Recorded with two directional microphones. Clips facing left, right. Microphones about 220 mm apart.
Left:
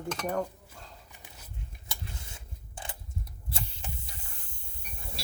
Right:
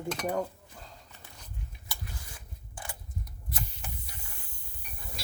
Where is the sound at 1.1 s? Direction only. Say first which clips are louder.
Even; 15° left (ahead or behind).